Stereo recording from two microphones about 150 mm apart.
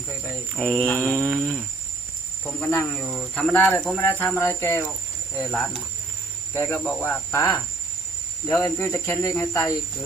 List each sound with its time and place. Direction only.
0.6 s a sound: 10° left (ahead or behind)
2.4 s speech: 10° left (ahead or behind)
5.5 s speech: 5° left (ahead or behind)
6.5 s speech: 15° left (ahead or behind)